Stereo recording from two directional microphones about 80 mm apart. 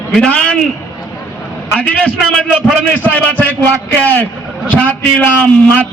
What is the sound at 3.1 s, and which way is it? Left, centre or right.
Speech, centre.